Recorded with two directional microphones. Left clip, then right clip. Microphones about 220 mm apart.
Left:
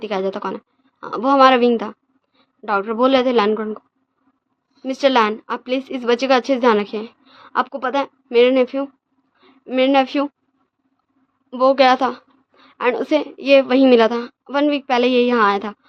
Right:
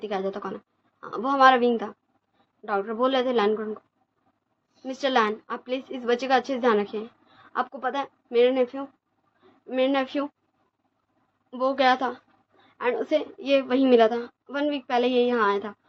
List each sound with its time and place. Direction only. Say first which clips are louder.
0.0 s a woman's voice: left 7 dB; 50° left (ahead or behind)
11.5 s a woman's voice: left 9 dB; 50° left (ahead or behind)